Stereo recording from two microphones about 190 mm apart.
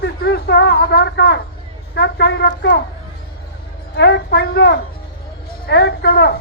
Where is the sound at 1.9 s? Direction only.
60° left (ahead or behind).